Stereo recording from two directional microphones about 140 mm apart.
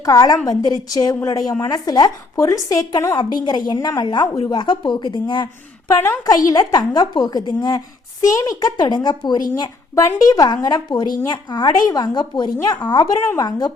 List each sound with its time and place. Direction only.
0.0 s speech: 25° left (ahead or behind)
5.9 s speech: 20° left (ahead or behind)